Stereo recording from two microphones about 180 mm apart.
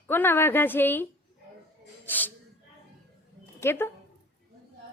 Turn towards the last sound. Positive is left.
turn(degrees=10)  # may be behind; listen again after turning